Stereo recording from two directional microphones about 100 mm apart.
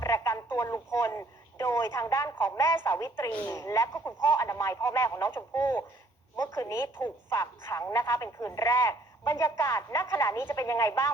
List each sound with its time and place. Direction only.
0.0 s radio: 30° left (ahead or behind)
0.5 s a woman's voice: 30° left (ahead or behind)